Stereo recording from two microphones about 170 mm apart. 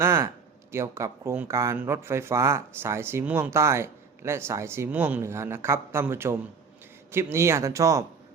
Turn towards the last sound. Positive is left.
turn(degrees=-20)  # may be behind; listen again after turning